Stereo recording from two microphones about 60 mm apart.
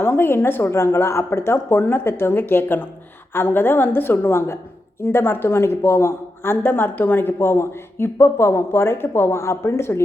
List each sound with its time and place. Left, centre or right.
0.0 s speech: left